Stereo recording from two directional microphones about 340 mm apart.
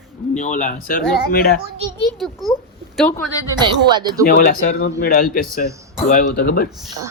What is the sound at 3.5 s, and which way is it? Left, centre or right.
Speech, centre.